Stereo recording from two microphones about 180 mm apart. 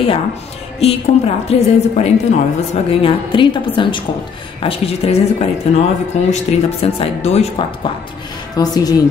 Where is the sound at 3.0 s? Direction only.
30° left (ahead or behind).